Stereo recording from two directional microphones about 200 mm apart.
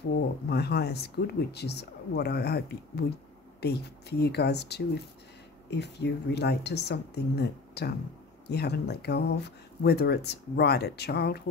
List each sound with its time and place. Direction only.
0.5 s speech: 55° left (ahead or behind)